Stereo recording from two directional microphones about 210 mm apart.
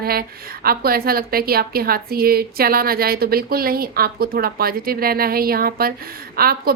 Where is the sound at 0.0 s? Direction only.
45° right (ahead or behind).